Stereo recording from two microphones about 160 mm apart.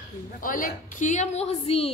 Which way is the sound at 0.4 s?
60° left (ahead or behind).